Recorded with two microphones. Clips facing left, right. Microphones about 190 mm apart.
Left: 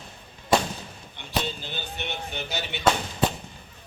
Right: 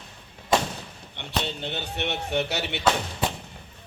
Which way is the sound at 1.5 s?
70° right (ahead or behind).